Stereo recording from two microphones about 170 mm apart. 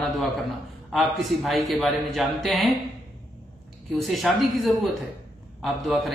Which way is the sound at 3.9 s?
Centre (ahead or behind).